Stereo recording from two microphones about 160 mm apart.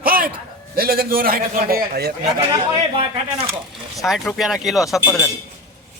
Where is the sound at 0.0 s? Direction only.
65° right (ahead or behind).